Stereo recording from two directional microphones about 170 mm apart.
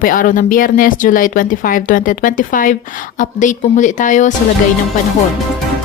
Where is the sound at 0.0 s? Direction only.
50° left (ahead or behind).